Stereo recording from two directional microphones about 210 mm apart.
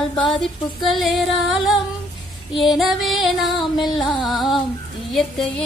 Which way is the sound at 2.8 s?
Centre (ahead or behind).